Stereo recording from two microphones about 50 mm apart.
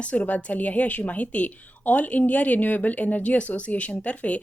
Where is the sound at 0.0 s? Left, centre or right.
Left.